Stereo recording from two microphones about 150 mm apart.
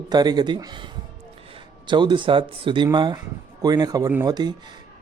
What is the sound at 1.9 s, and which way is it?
Speech, 30° right (ahead or behind).